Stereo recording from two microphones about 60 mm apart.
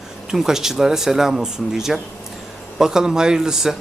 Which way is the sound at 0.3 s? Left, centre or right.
Centre.